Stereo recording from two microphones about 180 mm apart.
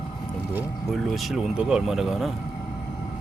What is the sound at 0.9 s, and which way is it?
Speech, centre (ahead or behind).